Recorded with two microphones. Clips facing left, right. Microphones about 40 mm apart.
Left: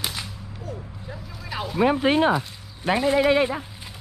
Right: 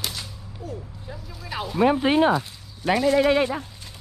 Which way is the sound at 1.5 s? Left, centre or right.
Centre.